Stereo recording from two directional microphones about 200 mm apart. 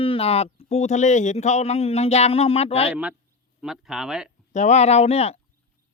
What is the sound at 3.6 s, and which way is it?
Speech, centre (ahead or behind).